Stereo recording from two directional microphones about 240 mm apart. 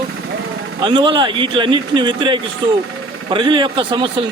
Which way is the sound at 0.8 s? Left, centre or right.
Centre.